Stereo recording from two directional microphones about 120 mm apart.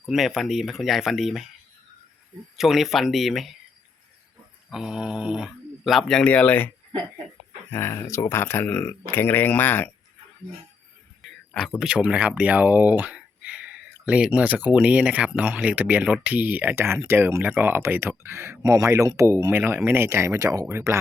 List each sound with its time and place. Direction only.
0.1 s speech: centre (ahead or behind)
2.6 s speech: centre (ahead or behind)
4.7 s speech: 5° right (ahead or behind); by 6.7 s 15° left (ahead or behind)
7.7 s speech: 20° left (ahead or behind)
11.5 s speech: 5° left (ahead or behind); by 21.0 s 20° right (ahead or behind)